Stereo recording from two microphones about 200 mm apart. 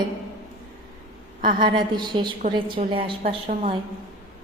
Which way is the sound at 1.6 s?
20° right (ahead or behind).